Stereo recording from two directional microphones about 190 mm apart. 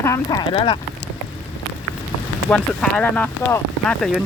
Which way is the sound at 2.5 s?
5° left (ahead or behind).